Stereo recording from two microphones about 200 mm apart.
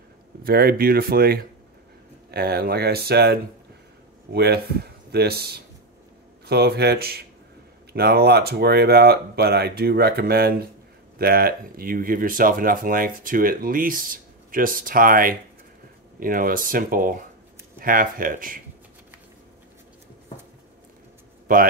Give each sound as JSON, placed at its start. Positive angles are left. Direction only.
{"t": 0.4, "sound": "speech", "side_deg": -50}